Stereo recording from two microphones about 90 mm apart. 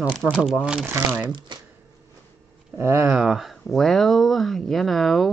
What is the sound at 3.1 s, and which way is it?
Speech, 5° right (ahead or behind).